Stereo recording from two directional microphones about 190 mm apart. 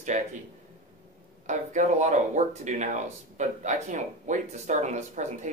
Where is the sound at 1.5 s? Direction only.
40° right (ahead or behind).